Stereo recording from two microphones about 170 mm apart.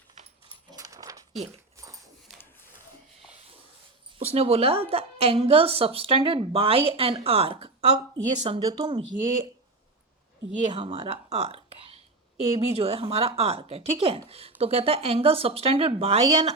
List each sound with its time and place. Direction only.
0.7 s dog: 20° right (ahead or behind)
4.2 s a woman's voice: 35° right (ahead or behind)
10.7 s a sound: 35° right (ahead or behind)
12.5 s a woman's voice: 30° right (ahead or behind)
16.2 s speech: 25° right (ahead or behind)